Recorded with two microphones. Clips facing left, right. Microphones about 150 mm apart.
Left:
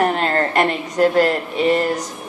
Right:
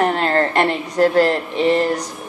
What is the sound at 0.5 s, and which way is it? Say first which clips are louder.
Speech: right 1 dB; 15° left (ahead or behind).